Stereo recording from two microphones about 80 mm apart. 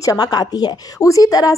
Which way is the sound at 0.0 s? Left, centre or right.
Left.